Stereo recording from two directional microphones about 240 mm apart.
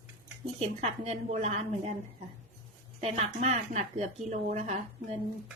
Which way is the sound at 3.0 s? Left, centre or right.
Right.